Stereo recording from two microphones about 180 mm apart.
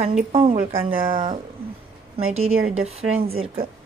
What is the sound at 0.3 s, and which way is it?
Speech, 30° right (ahead or behind).